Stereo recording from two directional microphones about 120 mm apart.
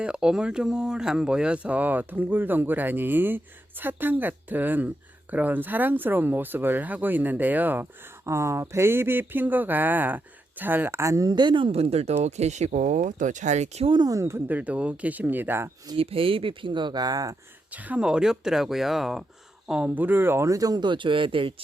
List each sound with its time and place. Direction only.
0.0 s speech: 5° right (ahead or behind); by 13.8 s 75° right (ahead or behind)
13.8 s speech: 35° right (ahead or behind)
14.2 s speech: 20° right (ahead or behind)
16.0 s speech: 50° right (ahead or behind); by 17.3 s 30° right (ahead or behind)
17.7 s speech: 10° right (ahead or behind); by 21.5 s 45° right (ahead or behind)